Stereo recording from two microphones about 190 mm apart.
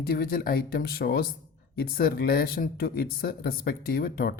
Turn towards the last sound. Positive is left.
turn(degrees=55)  # may be behind; listen again after turning